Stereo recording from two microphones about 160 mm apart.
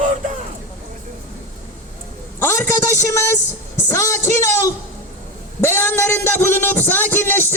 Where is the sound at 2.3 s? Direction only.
15° left (ahead or behind).